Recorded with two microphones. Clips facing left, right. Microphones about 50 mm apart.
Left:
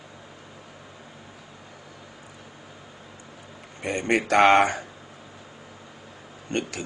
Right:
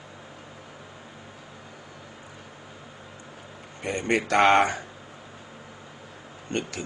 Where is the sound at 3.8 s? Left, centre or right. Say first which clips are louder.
Left 1 dB; left.